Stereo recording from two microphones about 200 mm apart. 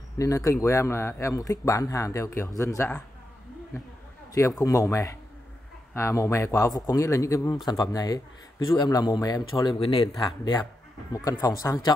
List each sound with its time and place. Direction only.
0.2 s a man's voice: 15° left (ahead or behind)
4.3 s a man's voice: 15° left (ahead or behind)